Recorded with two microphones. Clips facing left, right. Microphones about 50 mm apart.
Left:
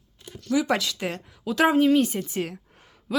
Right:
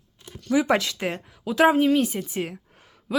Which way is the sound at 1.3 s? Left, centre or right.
Centre.